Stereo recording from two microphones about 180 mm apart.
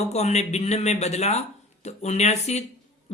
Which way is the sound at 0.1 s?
40° left (ahead or behind).